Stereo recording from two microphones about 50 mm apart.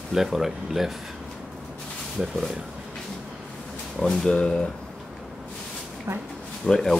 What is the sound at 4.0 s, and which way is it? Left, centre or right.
Speech, centre.